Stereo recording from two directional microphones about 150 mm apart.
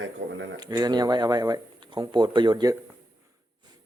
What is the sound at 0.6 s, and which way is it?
Speech, 25° right (ahead or behind).